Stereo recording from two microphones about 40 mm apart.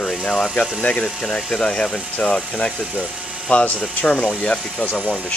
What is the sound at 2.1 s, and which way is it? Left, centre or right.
Speech, left.